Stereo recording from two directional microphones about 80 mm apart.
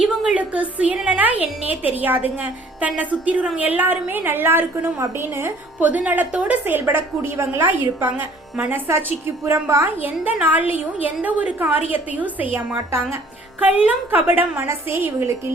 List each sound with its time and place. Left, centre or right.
0.0 s a woman's voice: centre; by 5.5 s right
5.8 s a woman's voice: centre
8.0 s a woman's voice: centre
8.9 s a woman's voice: right
10.4 s a woman's voice: right
12.5 s a woman's voice: right
13.6 s a woman's voice: right